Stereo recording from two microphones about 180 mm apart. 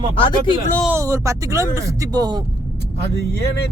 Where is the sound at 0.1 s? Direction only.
30° left (ahead or behind).